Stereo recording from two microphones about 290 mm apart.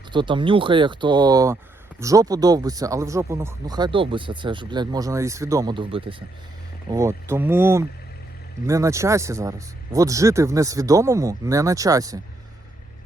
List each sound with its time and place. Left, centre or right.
0.1 s speech: centre